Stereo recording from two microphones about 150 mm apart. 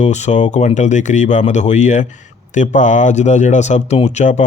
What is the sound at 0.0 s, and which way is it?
Speech, 50° left (ahead or behind).